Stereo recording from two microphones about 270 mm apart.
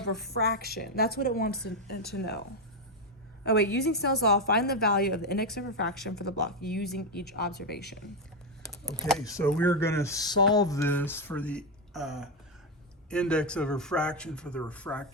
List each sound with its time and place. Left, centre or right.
0.3 s a woman's voice: left
3.4 s a woman's voice: left
8.6 s a sound: centre
9.2 s a man's voice: centre